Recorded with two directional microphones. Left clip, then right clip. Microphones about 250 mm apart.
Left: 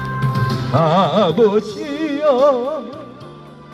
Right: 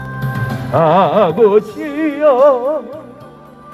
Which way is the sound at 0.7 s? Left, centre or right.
Right.